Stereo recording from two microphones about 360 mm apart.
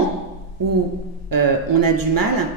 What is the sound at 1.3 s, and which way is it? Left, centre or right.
A woman's voice, right.